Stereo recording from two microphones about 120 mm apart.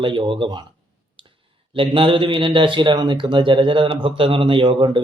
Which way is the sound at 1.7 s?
45° right (ahead or behind).